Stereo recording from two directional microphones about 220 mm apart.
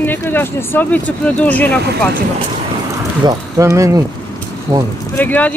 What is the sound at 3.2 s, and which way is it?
Speech, 15° right (ahead or behind).